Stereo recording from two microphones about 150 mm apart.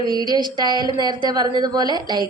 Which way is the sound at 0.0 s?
30° right (ahead or behind).